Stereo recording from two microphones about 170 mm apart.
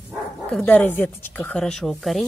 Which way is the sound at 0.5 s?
10° left (ahead or behind).